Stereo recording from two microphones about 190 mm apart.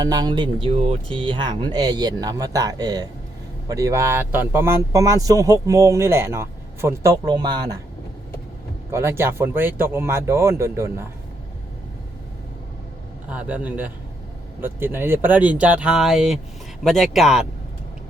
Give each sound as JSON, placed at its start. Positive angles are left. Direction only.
{"t": 0.0, "sound": "speech", "side_deg": -20}
{"t": 8.9, "sound": "speech", "side_deg": -15}
{"t": 13.3, "sound": "speech", "side_deg": -10}